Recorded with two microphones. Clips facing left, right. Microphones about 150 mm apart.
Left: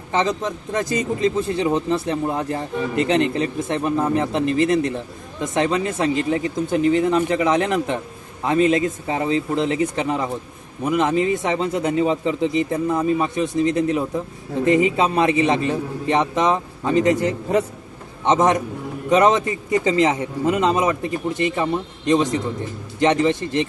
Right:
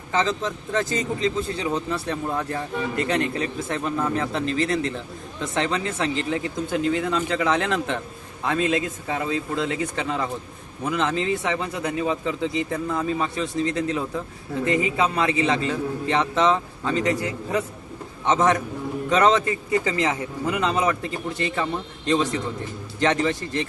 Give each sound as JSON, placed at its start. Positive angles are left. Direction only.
{"t": 0.1, "sound": "a man's voice", "side_deg": 20}